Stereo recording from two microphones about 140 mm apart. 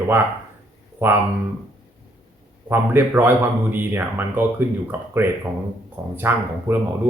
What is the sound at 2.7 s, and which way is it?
Speech, 15° right (ahead or behind).